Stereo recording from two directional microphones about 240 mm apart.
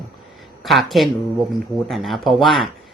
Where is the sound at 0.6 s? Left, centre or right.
Centre.